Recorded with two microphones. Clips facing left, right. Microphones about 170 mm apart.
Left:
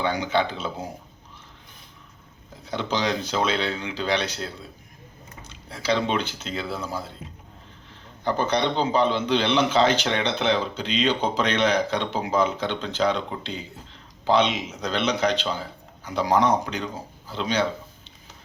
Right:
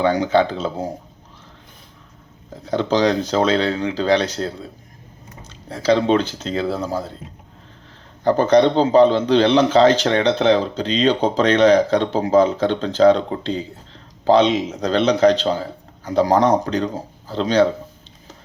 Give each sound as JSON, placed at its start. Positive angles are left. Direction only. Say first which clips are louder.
{"t": 0.0, "sound": "a man's voice", "louder": "right 7 dB", "side_deg": -40}
{"t": 2.5, "sound": "a man's voice", "louder": "right 8 dB", "side_deg": -40}
{"t": 8.2, "sound": "a man's voice", "louder": "right 10 dB", "side_deg": -40}